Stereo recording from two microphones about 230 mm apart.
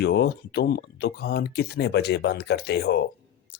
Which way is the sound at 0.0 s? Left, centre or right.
Left.